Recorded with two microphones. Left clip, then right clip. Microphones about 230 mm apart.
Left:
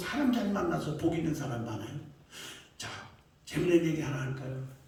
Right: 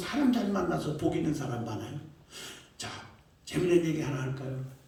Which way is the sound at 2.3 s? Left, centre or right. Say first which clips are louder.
Right 1 dB; left.